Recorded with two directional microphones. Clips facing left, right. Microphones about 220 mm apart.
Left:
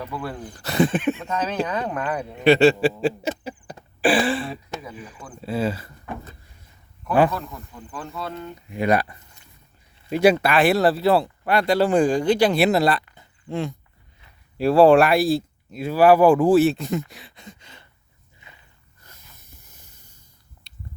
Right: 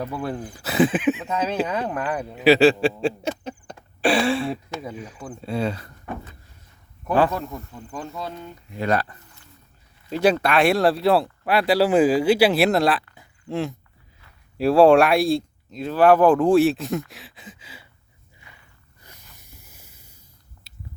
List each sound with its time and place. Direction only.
0.1 s speech: 25° right (ahead or behind)
0.5 s speech: 5° right (ahead or behind)
7.3 s speech: 20° right (ahead or behind)
8.8 s speech: 15° left (ahead or behind)
13.1 s a sound: centre (ahead or behind)
14.6 s speech: centre (ahead or behind)
18.4 s walk: 20° left (ahead or behind)
19.6 s a sound: 10° right (ahead or behind)